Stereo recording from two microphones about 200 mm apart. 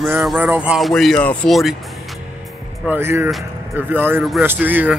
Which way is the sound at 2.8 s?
10° right (ahead or behind).